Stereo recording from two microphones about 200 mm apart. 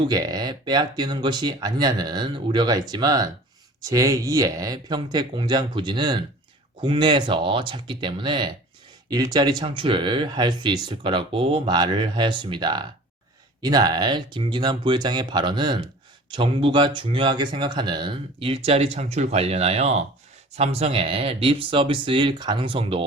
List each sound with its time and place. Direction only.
0.0 s speech: 20° right (ahead or behind)